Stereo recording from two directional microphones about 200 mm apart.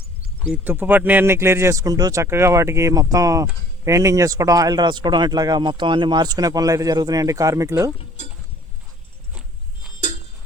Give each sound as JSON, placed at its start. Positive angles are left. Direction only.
{"t": 0.5, "sound": "speech", "side_deg": -10}
{"t": 7.9, "sound": "speech", "side_deg": 35}
{"t": 10.0, "sound": "a sound", "side_deg": 40}